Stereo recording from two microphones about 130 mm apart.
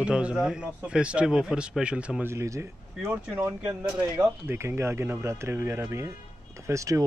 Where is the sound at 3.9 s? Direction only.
35° right (ahead or behind).